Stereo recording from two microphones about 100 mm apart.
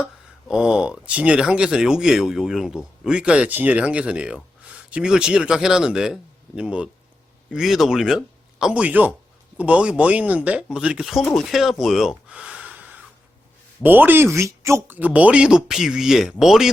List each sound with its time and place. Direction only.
0.0 s speech: 5° right (ahead or behind); by 14.9 s 30° right (ahead or behind)
14.9 s speech: 15° right (ahead or behind)